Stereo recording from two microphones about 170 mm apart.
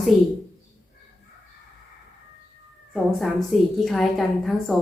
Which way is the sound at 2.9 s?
Centre (ahead or behind).